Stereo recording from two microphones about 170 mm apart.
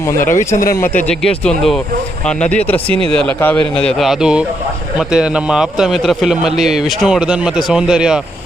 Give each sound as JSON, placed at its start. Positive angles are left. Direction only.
{"t": 0.3, "sound": "speech", "side_deg": 50}
{"t": 1.2, "sound": "a man's voice", "side_deg": 5}